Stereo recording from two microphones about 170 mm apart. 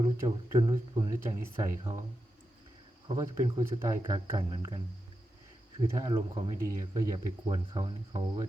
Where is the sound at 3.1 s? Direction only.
25° right (ahead or behind).